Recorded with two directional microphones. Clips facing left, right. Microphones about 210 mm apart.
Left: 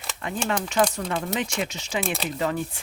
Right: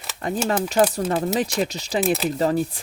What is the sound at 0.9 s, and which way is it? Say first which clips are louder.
Speech: right 6 dB; 35° right (ahead or behind).